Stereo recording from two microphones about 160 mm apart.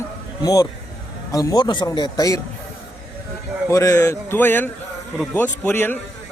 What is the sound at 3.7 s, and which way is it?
Speech, 20° left (ahead or behind).